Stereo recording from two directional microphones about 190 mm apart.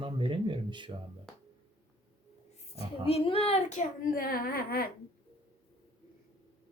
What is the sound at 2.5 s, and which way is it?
Speech, 30° left (ahead or behind).